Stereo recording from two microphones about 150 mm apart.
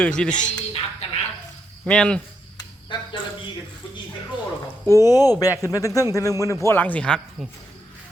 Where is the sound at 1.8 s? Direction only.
5° left (ahead or behind).